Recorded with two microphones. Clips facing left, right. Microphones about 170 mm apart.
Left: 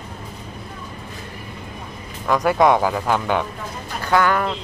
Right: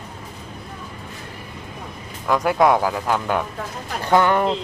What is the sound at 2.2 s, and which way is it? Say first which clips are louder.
Speech: left 1 dB; 5° right (ahead or behind).